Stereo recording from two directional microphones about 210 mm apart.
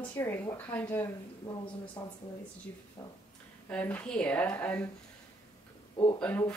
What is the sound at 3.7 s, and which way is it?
Speech, 5° left (ahead or behind).